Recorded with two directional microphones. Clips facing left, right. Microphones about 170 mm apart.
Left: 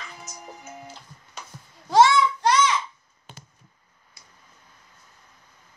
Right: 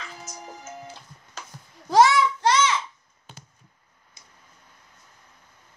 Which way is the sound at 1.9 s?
25° left (ahead or behind).